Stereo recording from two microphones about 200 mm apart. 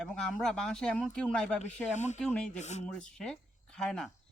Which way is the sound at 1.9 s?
35° left (ahead or behind).